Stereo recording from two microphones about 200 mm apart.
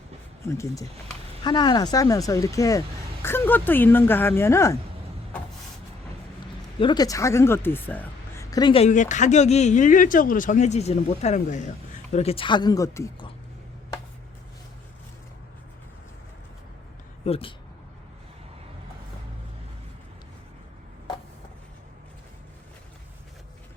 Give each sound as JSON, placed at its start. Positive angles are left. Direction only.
{"t": 0.4, "sound": "speech", "side_deg": 15}
{"t": 6.7, "sound": "speech", "side_deg": 20}
{"t": 17.2, "sound": "speech", "side_deg": 30}